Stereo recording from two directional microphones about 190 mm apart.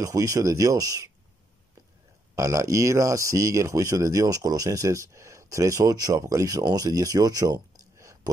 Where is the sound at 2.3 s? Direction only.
15° right (ahead or behind).